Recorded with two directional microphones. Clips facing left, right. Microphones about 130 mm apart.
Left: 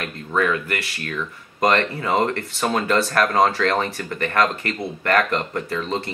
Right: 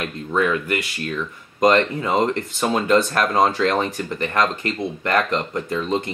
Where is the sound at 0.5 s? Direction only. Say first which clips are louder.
Right 2 dB; 15° right (ahead or behind).